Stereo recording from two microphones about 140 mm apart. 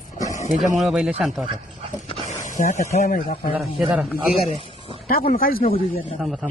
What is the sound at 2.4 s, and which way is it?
Speech, 65° left (ahead or behind).